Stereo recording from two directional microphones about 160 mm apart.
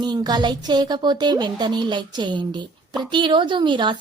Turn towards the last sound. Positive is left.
turn(degrees=-30)  # may be behind; listen again after turning